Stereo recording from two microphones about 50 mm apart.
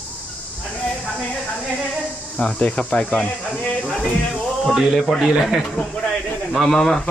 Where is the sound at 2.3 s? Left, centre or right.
Centre.